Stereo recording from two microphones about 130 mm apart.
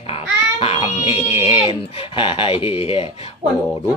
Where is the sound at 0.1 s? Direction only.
45° left (ahead or behind).